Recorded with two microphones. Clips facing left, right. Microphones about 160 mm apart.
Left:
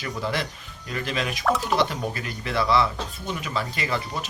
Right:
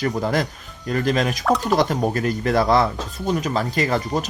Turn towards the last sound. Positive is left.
turn(degrees=-40)  # may be behind; listen again after turning